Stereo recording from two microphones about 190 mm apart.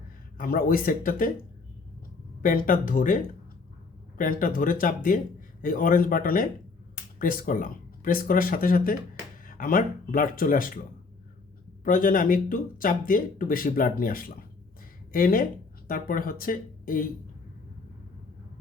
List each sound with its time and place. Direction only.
0.3 s speech: 50° left (ahead or behind)
2.4 s speech: 45° left (ahead or behind)
4.2 s speech: 45° left (ahead or behind)
11.9 s speech: 45° left (ahead or behind)